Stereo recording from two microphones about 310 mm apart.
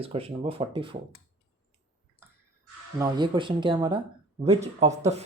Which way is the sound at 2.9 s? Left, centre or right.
Centre.